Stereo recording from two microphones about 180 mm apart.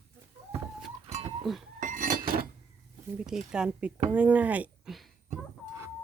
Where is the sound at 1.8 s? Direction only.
45° right (ahead or behind).